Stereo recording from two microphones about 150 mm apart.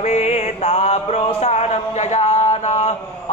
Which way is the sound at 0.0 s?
45° left (ahead or behind).